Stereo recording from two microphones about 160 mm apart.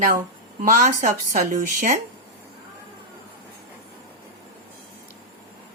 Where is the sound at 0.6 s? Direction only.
50° right (ahead or behind).